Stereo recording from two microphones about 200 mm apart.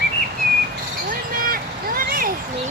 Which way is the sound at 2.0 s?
45° right (ahead or behind).